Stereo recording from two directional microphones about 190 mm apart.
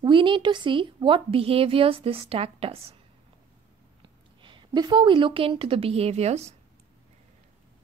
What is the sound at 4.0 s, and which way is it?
A woman's voice, 25° right (ahead or behind).